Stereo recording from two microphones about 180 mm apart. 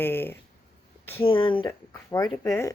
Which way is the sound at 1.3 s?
30° left (ahead or behind).